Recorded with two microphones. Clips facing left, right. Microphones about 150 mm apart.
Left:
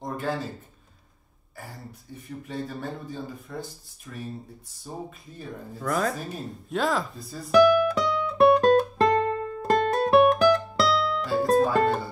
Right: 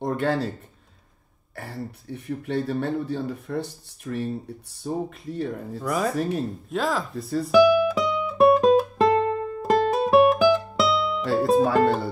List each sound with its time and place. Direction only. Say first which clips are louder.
0.0 s a sound: right 7 dB; 70° right (ahead or behind)
1.5 s speech: right 8 dB; 70° right (ahead or behind)
5.8 s speech: right 2 dB; centre (ahead or behind)
7.4 s music: right 1 dB; centre (ahead or behind)